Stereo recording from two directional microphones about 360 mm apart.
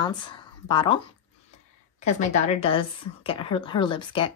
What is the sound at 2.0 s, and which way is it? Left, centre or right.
A woman's voice, centre.